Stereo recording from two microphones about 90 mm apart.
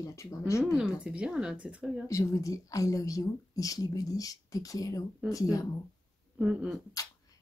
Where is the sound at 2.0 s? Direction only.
35° left (ahead or behind).